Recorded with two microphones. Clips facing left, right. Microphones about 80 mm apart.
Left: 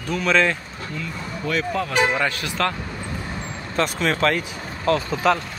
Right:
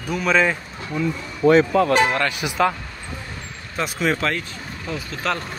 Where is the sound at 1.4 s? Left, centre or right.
Right.